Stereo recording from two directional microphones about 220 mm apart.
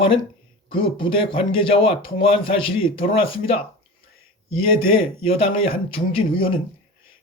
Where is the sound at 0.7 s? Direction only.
25° left (ahead or behind).